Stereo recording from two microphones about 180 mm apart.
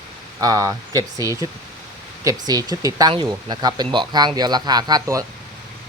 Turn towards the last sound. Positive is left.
turn(degrees=-20)  # may be behind; listen again after turning